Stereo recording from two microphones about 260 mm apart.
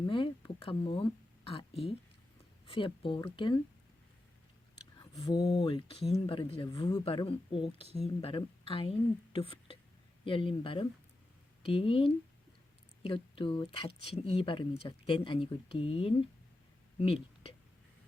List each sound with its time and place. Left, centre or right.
0.1 s speech: centre
5.2 s speech: centre